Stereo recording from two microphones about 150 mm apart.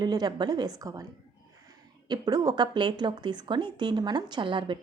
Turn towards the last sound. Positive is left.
turn(degrees=-30)  # may be behind; listen again after turning